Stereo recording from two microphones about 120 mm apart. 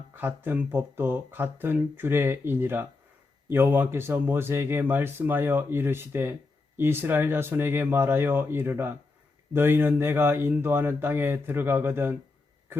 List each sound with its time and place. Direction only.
0.2 s speech: 15° right (ahead or behind)